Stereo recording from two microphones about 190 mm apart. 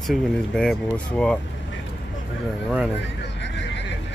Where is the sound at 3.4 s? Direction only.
65° left (ahead or behind).